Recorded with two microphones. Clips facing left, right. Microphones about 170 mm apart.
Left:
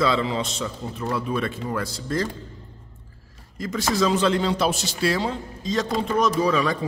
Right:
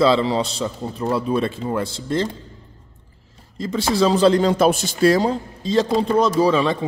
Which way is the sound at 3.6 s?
30° right (ahead or behind).